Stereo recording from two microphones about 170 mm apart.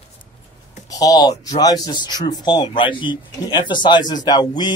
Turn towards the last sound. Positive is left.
turn(degrees=25)  # may be behind; listen again after turning